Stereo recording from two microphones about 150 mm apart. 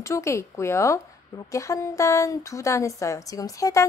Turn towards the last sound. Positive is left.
turn(degrees=20)  # may be behind; listen again after turning